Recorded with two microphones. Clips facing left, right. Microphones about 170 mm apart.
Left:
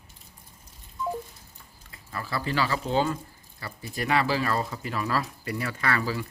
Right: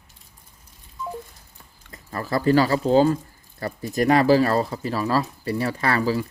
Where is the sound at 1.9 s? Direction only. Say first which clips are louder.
Right 7 dB; 45° right (ahead or behind).